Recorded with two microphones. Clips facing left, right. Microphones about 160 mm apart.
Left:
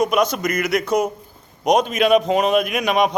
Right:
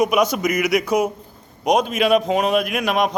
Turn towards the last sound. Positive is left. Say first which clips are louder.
# left 1 dB
turn(degrees=0)  # may be behind; listen again after turning